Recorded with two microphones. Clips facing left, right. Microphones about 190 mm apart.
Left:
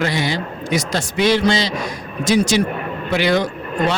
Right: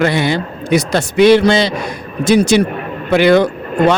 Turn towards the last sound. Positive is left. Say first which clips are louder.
# right 7 dB
turn(degrees=-55)  # may be behind; listen again after turning